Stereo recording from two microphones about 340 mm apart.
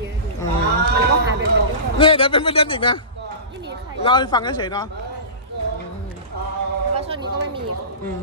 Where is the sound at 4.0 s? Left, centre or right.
Centre.